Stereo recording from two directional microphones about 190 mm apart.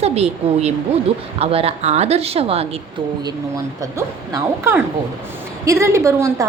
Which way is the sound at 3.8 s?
15° right (ahead or behind).